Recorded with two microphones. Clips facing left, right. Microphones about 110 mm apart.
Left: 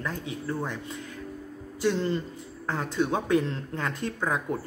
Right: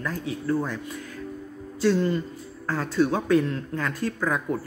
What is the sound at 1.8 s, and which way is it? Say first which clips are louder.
Speech: right 4 dB; 20° left (ahead or behind).